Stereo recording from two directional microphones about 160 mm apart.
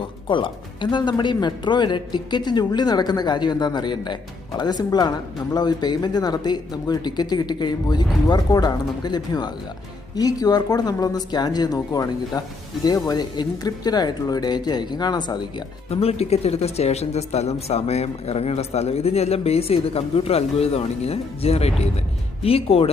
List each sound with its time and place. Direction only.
0.3 s speech: 30° left (ahead or behind)
15.9 s speech: 40° left (ahead or behind)